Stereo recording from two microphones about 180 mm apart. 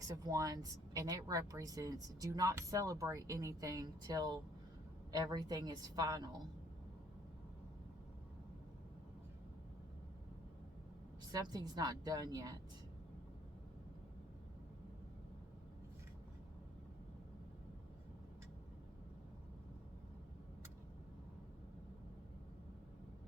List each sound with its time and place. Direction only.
0.3 s a woman's voice: 20° right (ahead or behind)
11.3 s a woman's voice: 20° right (ahead or behind)